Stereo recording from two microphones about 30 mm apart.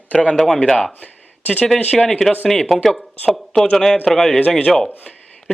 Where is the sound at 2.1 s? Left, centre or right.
Centre.